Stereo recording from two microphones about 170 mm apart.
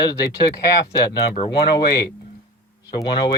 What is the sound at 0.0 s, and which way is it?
Speech, 25° left (ahead or behind).